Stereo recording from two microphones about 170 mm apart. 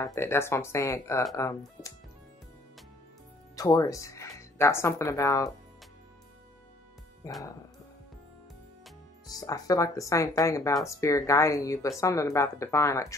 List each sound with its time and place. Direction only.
0.0 s speech: 15° left (ahead or behind)
3.5 s speech: 20° left (ahead or behind)
7.2 s speech: 20° left (ahead or behind)
9.3 s speech: 20° left (ahead or behind)